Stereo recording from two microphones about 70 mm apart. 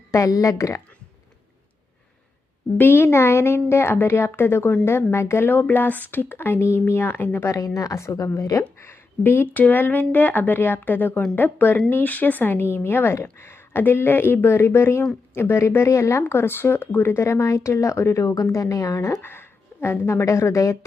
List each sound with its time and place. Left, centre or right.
0.1 s speech: left
2.7 s a woman's voice: left
5.5 s a woman's voice: left
7.3 s speech: left
8.8 s a woman's voice: left
19.2 s a woman's voice: left